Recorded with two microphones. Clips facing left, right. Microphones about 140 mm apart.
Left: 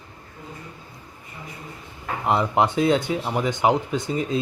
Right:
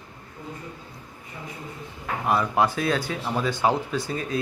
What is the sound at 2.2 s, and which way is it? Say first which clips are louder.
Speech: left 2 dB; 20° left (ahead or behind).